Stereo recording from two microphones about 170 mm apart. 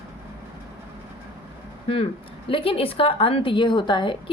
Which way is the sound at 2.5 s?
35° left (ahead or behind).